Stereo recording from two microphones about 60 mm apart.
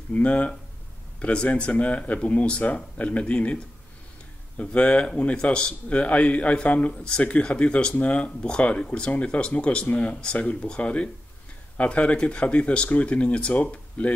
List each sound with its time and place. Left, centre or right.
0.1 s speech: left